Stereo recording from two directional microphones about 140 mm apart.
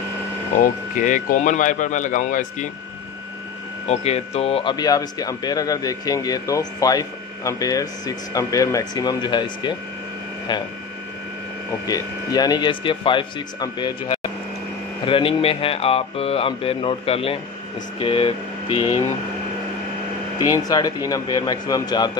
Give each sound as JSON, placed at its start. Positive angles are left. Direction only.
{"t": 1.0, "sound": "speech", "side_deg": 65}
{"t": 3.8, "sound": "speech", "side_deg": 50}
{"t": 4.7, "sound": "speech", "side_deg": 25}
{"t": 11.8, "sound": "speech", "side_deg": 25}
{"t": 20.5, "sound": "speech", "side_deg": 25}